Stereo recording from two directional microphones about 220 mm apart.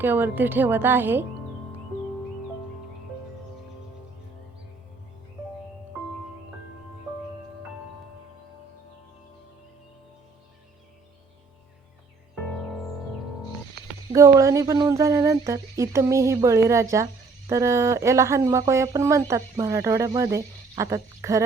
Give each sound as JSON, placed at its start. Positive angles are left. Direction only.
{"t": 0.0, "sound": "speech", "side_deg": -10}
{"t": 13.8, "sound": "a sound", "side_deg": -45}
{"t": 14.1, "sound": "speech", "side_deg": -15}